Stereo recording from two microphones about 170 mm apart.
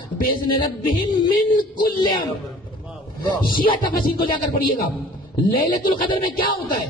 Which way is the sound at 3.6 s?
55° left (ahead or behind).